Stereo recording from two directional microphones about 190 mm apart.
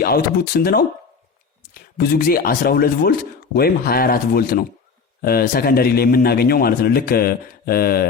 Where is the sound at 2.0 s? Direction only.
50° left (ahead or behind).